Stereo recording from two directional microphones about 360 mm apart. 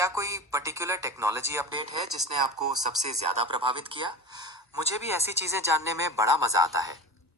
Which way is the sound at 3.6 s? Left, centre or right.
Centre.